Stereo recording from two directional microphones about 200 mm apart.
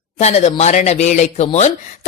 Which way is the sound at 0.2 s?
30° left (ahead or behind).